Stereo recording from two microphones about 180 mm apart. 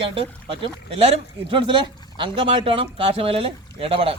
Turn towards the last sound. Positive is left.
turn(degrees=-30)  # may be behind; listen again after turning